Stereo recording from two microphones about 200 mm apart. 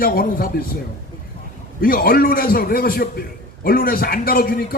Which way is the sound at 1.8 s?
45° left (ahead or behind).